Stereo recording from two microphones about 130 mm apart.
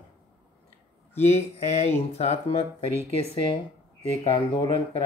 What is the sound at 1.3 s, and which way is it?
Speech, 55° left (ahead or behind).